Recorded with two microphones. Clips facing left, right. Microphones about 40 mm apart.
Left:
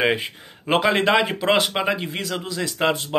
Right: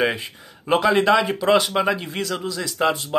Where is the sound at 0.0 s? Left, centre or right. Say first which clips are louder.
Left 1 dB; left.